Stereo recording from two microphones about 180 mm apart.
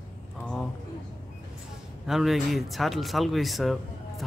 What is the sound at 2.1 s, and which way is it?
Speech, centre (ahead or behind).